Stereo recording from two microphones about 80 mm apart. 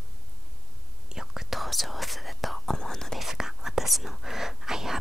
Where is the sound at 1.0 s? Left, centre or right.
Centre.